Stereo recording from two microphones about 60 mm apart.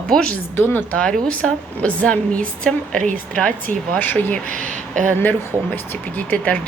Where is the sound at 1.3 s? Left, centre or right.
Left.